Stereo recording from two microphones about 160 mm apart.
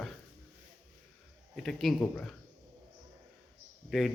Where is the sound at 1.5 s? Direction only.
Centre (ahead or behind).